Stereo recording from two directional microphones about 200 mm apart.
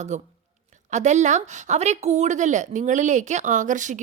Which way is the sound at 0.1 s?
35° right (ahead or behind).